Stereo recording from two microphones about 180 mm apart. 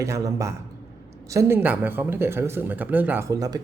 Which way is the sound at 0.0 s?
15° right (ahead or behind).